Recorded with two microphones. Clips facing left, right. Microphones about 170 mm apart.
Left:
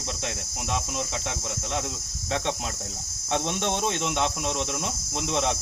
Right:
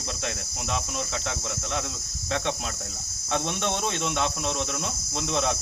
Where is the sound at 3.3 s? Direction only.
20° left (ahead or behind).